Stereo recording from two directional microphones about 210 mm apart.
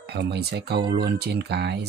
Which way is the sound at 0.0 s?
50° right (ahead or behind).